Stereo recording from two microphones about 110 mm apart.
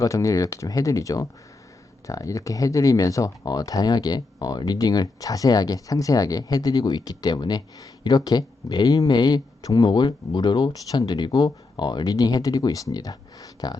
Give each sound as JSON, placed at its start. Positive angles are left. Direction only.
{"t": 0.0, "sound": "speech", "side_deg": 30}